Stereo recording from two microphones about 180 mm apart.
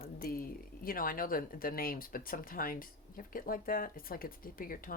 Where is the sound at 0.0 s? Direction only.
55° left (ahead or behind).